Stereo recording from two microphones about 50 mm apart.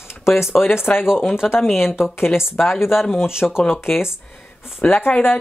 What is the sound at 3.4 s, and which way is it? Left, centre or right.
Speech, left.